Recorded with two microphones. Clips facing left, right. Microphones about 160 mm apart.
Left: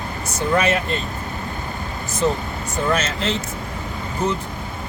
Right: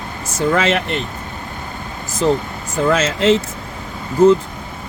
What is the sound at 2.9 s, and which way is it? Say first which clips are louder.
Speech: right 9 dB; 90° right.